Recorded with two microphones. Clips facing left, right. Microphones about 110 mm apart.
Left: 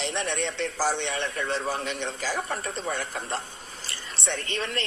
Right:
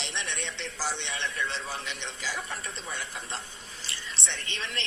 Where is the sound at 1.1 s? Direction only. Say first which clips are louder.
Left 5 dB; 45° left (ahead or behind).